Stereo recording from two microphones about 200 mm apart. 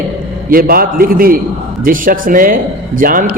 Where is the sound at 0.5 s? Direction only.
45° right (ahead or behind).